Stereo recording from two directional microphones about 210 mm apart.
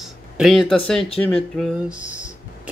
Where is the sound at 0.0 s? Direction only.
Centre (ahead or behind).